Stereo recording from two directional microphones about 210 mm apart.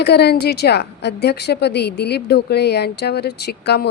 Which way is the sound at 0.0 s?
50° left (ahead or behind).